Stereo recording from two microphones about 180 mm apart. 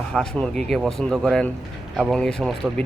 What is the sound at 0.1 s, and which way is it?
Speech, 5° left (ahead or behind).